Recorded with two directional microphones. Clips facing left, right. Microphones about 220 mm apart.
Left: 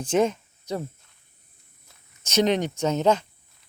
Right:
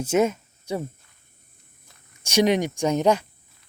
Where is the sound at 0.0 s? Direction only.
10° right (ahead or behind).